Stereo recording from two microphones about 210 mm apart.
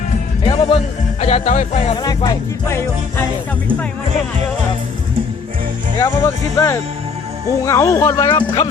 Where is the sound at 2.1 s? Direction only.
15° left (ahead or behind).